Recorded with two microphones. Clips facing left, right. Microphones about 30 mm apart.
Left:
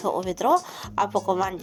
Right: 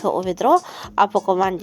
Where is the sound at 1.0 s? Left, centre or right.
Right.